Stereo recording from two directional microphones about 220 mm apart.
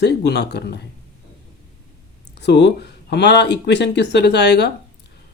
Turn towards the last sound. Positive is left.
turn(degrees=50)  # may be behind; listen again after turning